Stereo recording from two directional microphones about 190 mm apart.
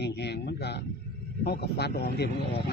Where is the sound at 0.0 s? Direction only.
60° left (ahead or behind).